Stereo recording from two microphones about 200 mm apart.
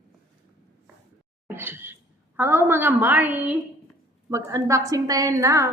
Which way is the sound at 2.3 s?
10° right (ahead or behind).